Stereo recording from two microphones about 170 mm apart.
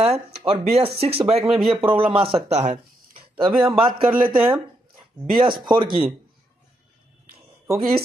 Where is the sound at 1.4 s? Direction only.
Centre (ahead or behind).